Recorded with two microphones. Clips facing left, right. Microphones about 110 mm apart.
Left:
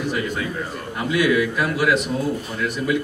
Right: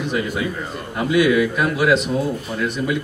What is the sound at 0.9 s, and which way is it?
A man's voice, 20° right (ahead or behind).